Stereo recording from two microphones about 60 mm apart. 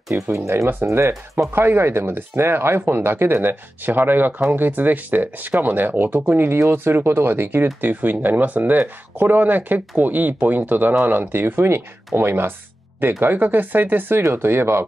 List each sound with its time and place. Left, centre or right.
0.1 s speech: right
1.6 s speech: right